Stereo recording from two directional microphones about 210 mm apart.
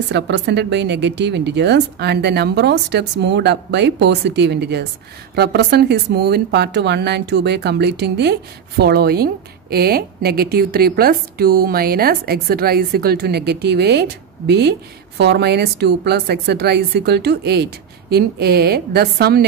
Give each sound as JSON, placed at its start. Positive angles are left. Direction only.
{"t": 0.1, "sound": "speech", "side_deg": -55}